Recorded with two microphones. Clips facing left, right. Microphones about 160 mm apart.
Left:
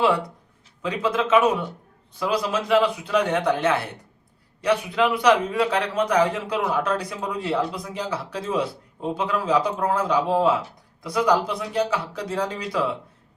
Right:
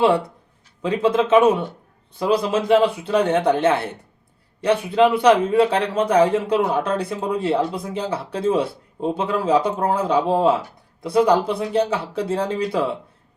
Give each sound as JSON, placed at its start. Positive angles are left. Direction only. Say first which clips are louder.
{"t": 0.8, "sound": "speech", "louder": "right 5 dB", "side_deg": -30}